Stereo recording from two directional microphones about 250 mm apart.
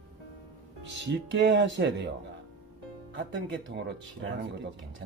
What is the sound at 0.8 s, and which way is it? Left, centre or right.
Speech, right.